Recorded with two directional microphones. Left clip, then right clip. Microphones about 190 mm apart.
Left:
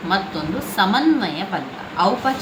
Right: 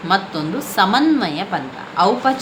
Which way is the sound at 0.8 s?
55° right (ahead or behind).